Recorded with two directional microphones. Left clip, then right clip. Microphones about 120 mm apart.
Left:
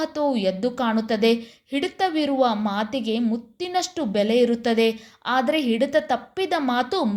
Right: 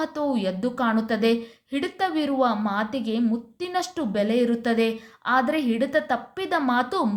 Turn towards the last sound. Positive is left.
turn(degrees=20)  # may be behind; listen again after turning